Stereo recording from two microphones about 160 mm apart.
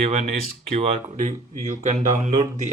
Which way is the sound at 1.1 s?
50° right (ahead or behind).